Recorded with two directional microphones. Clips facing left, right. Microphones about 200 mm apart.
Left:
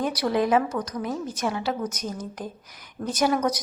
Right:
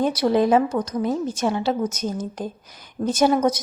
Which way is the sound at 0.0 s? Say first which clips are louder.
Right 5 dB; 25° right (ahead or behind).